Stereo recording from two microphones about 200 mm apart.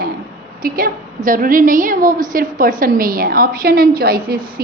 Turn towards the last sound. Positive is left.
turn(degrees=-50)  # may be behind; listen again after turning